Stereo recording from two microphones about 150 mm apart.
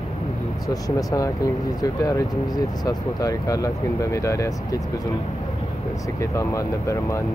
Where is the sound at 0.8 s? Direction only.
25° left (ahead or behind).